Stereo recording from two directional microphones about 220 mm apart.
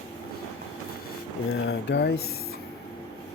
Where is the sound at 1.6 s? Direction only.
50° left (ahead or behind).